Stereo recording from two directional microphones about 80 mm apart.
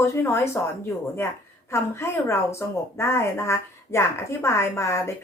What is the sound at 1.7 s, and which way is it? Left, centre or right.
A woman's voice, left.